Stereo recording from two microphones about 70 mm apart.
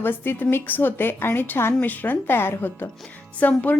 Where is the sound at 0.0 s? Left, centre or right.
Left.